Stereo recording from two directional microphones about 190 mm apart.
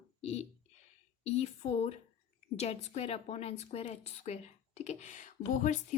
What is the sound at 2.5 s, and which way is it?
A woman's voice, 35° left (ahead or behind).